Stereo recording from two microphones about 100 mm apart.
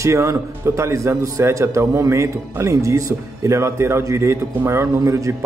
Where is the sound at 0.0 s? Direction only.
30° right (ahead or behind).